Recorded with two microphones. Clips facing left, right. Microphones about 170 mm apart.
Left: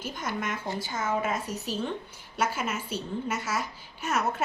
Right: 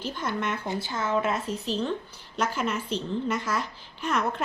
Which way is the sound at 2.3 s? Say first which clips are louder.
Right 2 dB; 10° left (ahead or behind).